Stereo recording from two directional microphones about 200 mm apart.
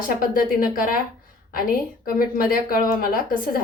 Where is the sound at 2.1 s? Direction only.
45° left (ahead or behind).